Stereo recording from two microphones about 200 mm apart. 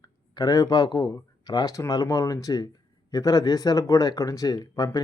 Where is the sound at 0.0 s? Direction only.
20° left (ahead or behind).